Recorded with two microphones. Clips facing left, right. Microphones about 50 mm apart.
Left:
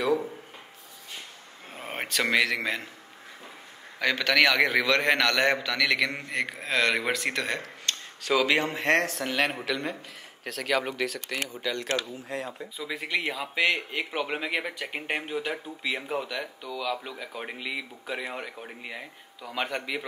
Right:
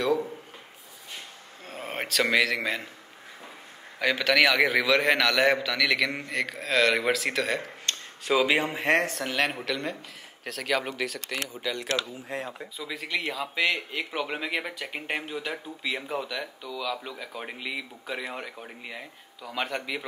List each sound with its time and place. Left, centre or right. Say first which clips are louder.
1.7 s a man's voice: right 1 dB; centre
4.0 s a man's voice: right 1 dB; centre
6.3 s a man's voice: right 2 dB; centre
7.6 s a man's voice: even; right; by 11.9 s centre
12.3 s speech: even; right
12.7 s speech: left 2 dB; centre